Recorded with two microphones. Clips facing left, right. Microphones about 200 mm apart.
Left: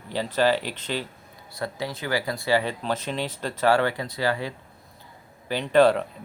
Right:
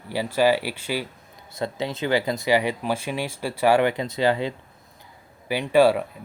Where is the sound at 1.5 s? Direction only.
20° right (ahead or behind).